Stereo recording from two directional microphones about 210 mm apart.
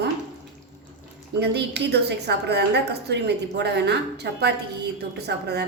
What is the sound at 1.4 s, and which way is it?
A woman's voice, 55° right (ahead or behind).